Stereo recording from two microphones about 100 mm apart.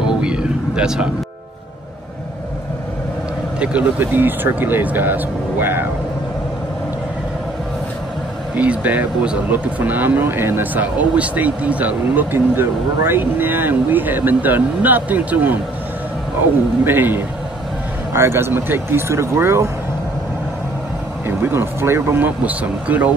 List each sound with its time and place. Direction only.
0.0 s vehicle: 10° right (ahead or behind)
3.5 s speech: 10° right (ahead or behind)
8.5 s speech: 15° right (ahead or behind)
16.8 s speech: 20° right (ahead or behind)
21.3 s speech: 25° right (ahead or behind)